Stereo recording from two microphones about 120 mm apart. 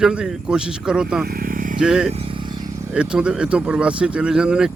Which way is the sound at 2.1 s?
45° right (ahead or behind).